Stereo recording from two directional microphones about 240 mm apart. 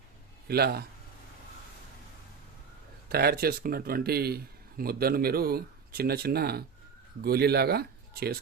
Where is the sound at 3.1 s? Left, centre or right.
Right.